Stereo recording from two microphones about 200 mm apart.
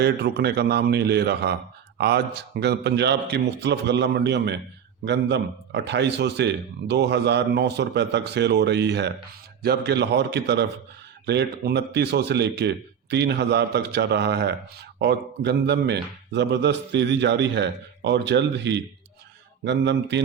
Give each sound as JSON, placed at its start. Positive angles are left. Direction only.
{"t": 0.0, "sound": "a man's voice", "side_deg": -55}